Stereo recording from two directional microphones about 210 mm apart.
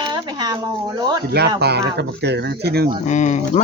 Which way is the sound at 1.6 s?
50° right (ahead or behind).